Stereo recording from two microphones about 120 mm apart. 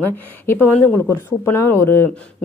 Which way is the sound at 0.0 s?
15° left (ahead or behind).